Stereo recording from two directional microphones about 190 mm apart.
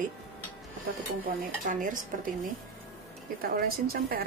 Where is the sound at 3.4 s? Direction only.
50° right (ahead or behind).